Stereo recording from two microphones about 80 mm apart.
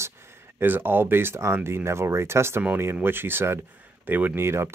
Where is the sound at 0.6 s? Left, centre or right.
Right.